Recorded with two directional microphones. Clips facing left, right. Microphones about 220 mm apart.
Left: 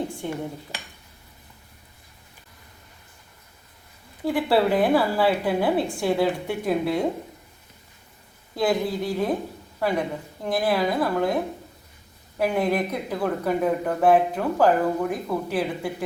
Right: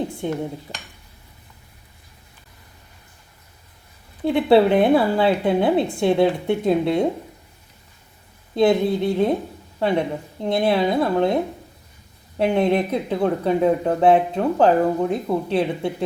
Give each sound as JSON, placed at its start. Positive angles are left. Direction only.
{"t": 0.2, "sound": "speech", "side_deg": -20}
{"t": 4.2, "sound": "speech", "side_deg": -25}
{"t": 8.5, "sound": "speech", "side_deg": -25}
{"t": 12.4, "sound": "speech", "side_deg": -25}